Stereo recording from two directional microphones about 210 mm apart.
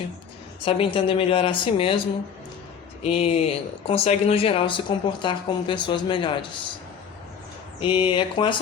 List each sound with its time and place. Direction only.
0.6 s speech: 25° left (ahead or behind)
3.0 s speech: 30° left (ahead or behind)
7.8 s speech: 25° left (ahead or behind)